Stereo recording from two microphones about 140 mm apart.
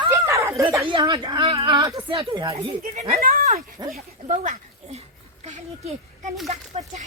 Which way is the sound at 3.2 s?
90° right.